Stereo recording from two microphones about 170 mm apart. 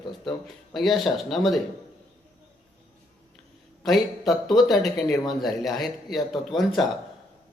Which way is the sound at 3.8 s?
Centre (ahead or behind).